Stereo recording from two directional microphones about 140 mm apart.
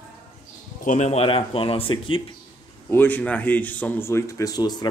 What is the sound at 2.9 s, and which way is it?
Speech, 15° left (ahead or behind).